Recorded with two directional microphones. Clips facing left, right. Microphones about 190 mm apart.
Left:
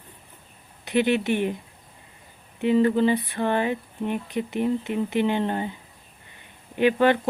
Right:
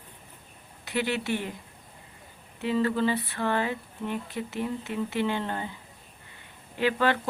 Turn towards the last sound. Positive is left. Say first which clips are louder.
# left 6 dB
turn(degrees=20)  # may be behind; listen again after turning